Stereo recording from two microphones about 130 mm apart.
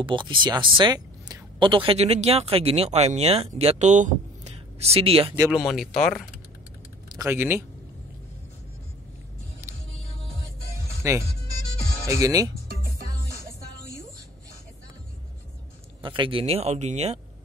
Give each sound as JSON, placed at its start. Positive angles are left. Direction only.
{"t": 0.0, "sound": "speech", "side_deg": -40}
{"t": 5.5, "sound": "speech", "side_deg": -5}
{"t": 7.2, "sound": "a man's voice", "side_deg": -15}
{"t": 11.0, "sound": "speech", "side_deg": -20}
{"t": 16.0, "sound": "speech", "side_deg": -40}